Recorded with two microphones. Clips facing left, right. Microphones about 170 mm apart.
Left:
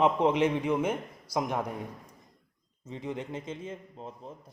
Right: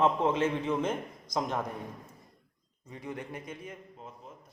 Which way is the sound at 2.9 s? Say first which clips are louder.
Left 4 dB; 20° left (ahead or behind).